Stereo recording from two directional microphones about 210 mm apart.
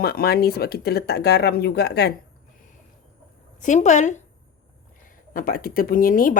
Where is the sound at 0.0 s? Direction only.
45° left (ahead or behind).